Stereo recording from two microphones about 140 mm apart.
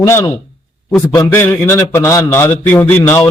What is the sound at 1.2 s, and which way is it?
A man's voice, 15° left (ahead or behind).